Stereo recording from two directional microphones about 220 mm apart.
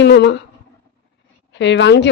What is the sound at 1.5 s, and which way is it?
Speech, 55° left (ahead or behind).